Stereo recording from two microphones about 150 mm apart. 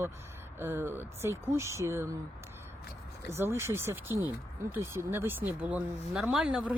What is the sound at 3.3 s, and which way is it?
Speech, 15° right (ahead or behind).